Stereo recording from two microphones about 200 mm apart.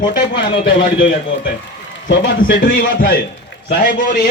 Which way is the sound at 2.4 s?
45° left (ahead or behind).